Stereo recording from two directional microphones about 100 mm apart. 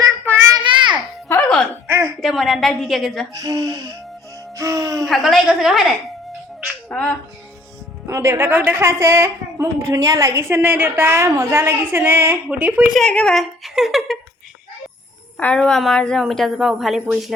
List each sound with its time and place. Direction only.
0.5 s a sound: 55° right (ahead or behind)
1.9 s a sound: 25° right (ahead or behind)
2.2 s a woman's voice: centre (ahead or behind)
3.3 s speech: 40° right (ahead or behind)
5.0 s a woman's voice: centre (ahead or behind)
6.9 s a woman's voice: 15° left (ahead or behind)
8.0 s a woman's voice: 30° right (ahead or behind)
12.9 s a woman's voice: 5° left (ahead or behind)
15.4 s a woman's voice: 10° left (ahead or behind)